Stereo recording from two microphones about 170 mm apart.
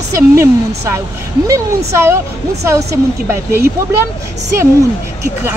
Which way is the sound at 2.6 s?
15° right (ahead or behind).